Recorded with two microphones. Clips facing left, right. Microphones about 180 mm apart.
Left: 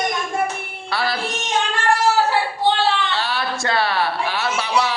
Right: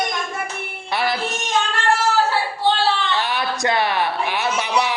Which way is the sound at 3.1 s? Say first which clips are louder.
Right 1 dB; 20° right (ahead or behind).